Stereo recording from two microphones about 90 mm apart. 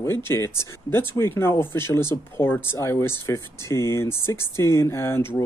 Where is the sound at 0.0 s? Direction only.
30° left (ahead or behind).